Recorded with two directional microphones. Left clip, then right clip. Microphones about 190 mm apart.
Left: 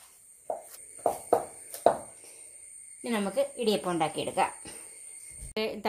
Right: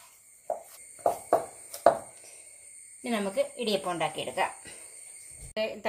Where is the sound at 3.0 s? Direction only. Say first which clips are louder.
Even; 25° left (ahead or behind).